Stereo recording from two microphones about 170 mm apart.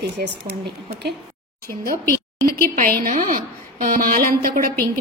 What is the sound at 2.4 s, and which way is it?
A woman's voice, 60° right (ahead or behind).